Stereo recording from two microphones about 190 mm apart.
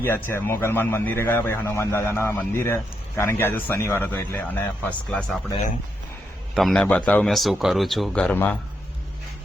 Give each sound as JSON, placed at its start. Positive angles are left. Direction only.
{"t": 0.0, "sound": "speech", "side_deg": 10}
{"t": 6.5, "sound": "a man's voice", "side_deg": 0}